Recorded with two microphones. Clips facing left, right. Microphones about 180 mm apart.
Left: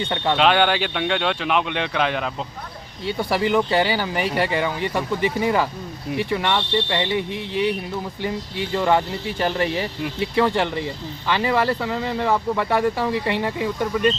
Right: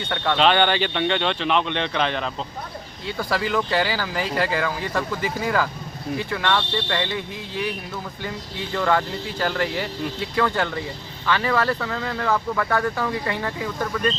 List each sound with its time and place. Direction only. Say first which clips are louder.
0.0 s speech: left 2 dB; 20° left (ahead or behind)
0.3 s speech: even; 5° left (ahead or behind)
3.2 s speech: left 4 dB; 25° left (ahead or behind)